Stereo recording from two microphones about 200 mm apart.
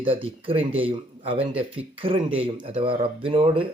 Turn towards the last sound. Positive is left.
turn(degrees=-25)  # may be behind; listen again after turning